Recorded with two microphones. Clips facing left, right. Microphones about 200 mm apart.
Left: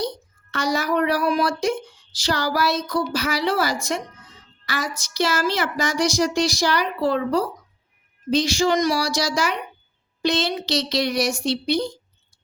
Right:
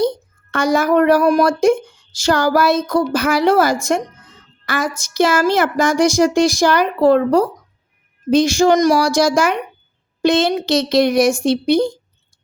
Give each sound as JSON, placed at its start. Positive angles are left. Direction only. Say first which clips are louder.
{"t": 0.0, "sound": "speech", "louder": "right 9 dB", "side_deg": -50}